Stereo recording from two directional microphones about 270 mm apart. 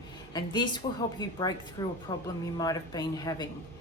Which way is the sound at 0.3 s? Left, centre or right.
Centre.